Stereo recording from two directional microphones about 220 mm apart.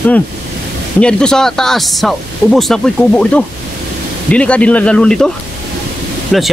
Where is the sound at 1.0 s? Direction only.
5° left (ahead or behind).